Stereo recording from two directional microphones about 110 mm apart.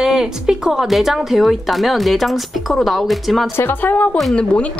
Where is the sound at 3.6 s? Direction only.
15° left (ahead or behind).